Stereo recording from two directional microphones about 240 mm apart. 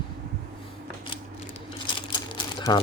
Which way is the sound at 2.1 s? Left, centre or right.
Centre.